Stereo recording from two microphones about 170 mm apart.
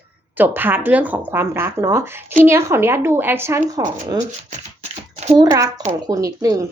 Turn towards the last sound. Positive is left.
turn(degrees=-20)  # may be behind; listen again after turning